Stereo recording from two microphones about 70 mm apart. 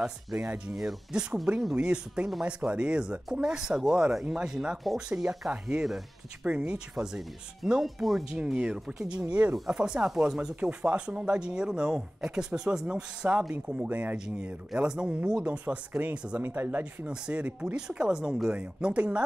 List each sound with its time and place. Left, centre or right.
0.0 s speech: centre
5.5 s speech: centre
13.8 s speech: right
14.1 s speech: centre; by 17.1 s right
17.1 s speech: centre